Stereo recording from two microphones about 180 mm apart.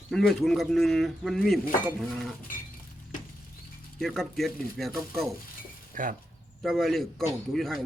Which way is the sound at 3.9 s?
Centre (ahead or behind).